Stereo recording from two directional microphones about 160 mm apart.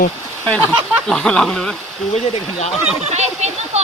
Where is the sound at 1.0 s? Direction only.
5° left (ahead or behind).